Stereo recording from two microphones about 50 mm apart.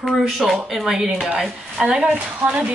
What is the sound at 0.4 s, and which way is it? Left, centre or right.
Speech, centre.